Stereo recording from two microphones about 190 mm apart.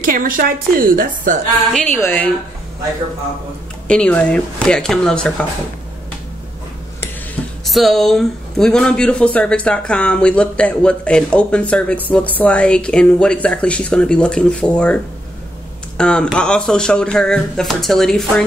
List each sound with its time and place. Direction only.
0.0 s a woman's voice: 45° right (ahead or behind)
1.7 s a woman's voice: 10° left (ahead or behind)
3.8 s speech: 5° left (ahead or behind)
7.6 s speech: centre (ahead or behind)
16.0 s speech: 5° left (ahead or behind)